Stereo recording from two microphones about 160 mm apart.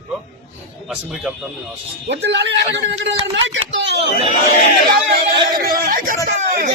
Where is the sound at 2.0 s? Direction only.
90° right.